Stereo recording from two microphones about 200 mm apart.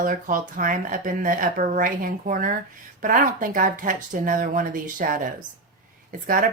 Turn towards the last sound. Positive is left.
turn(degrees=-45)  # may be behind; listen again after turning